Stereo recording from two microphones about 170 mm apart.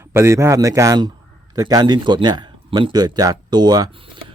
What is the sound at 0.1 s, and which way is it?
Speech, 15° right (ahead or behind).